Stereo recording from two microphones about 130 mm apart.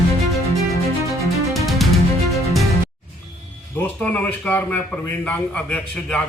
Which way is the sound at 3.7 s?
15° left (ahead or behind).